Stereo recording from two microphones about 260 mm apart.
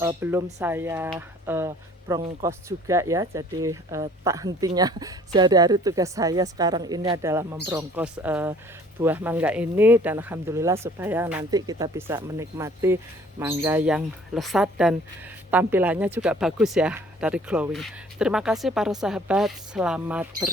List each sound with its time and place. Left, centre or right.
0.0 s speech: centre